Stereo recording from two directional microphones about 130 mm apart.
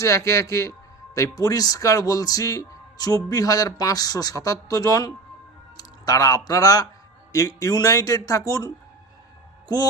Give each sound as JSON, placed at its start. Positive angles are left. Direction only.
{"t": 0.0, "sound": "speech", "side_deg": 25}